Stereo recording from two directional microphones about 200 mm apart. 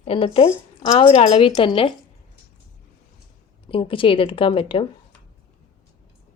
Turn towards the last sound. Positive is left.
turn(degrees=25)  # may be behind; listen again after turning